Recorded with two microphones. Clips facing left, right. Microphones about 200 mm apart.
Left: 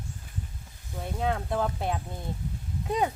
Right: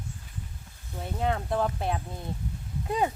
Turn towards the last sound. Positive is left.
turn(degrees=0)  # may be behind; listen again after turning